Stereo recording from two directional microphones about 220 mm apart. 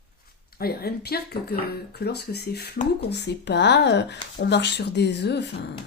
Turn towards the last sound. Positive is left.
turn(degrees=50)  # may be behind; listen again after turning